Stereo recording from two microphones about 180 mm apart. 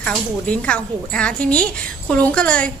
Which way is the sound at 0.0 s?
5° left (ahead or behind).